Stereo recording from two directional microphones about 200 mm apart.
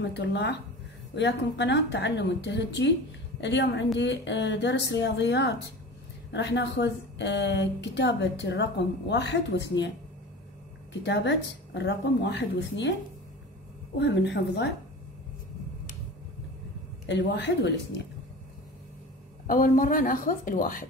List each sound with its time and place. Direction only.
0.1 s a woman's voice: 60° left (ahead or behind)
10.9 s a woman's voice: 60° left (ahead or behind)
13.9 s a woman's voice: 60° left (ahead or behind)
17.0 s a woman's voice: 60° left (ahead or behind)
19.4 s a woman's voice: 45° left (ahead or behind)